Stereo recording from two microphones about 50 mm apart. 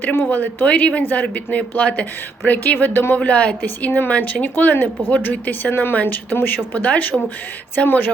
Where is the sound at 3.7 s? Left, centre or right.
Left.